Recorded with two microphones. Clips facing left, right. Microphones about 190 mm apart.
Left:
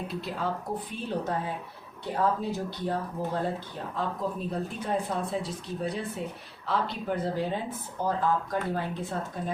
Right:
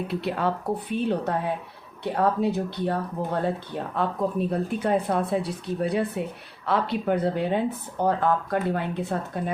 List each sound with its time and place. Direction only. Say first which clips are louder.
0.1 s speech: right 7 dB; 65° right (ahead or behind)